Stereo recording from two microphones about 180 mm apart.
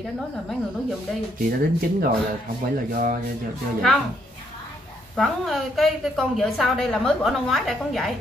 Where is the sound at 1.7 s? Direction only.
55° right (ahead or behind).